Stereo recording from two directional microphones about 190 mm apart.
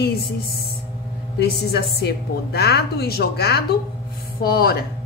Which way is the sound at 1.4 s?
60° left (ahead or behind).